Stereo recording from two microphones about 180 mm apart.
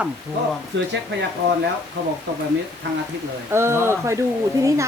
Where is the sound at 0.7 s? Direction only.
75° right (ahead or behind).